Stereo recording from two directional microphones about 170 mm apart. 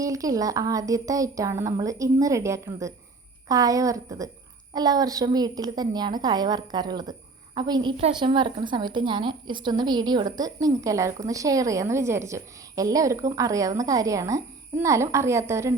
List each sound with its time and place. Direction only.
0.0 s a woman's voice: 20° right (ahead or behind)